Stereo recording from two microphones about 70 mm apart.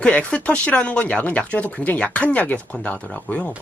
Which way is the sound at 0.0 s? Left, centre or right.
Centre.